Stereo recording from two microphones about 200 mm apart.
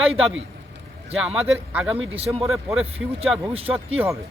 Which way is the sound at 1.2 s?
5° right (ahead or behind).